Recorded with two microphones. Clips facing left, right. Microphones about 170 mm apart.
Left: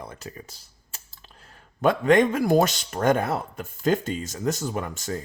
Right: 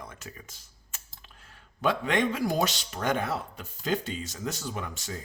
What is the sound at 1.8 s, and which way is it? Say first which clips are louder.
Speech: left 8 dB; 45° left (ahead or behind).